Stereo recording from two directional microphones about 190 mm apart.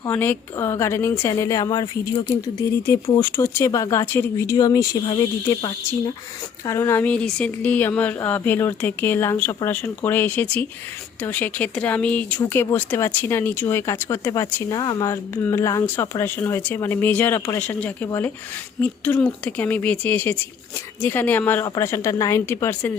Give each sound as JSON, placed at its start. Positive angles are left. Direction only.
{"t": 0.0, "sound": "speech", "side_deg": 10}